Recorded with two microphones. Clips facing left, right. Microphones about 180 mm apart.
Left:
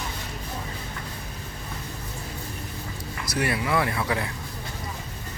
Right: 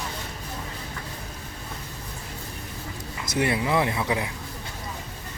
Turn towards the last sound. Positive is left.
turn(degrees=-15)  # may be behind; listen again after turning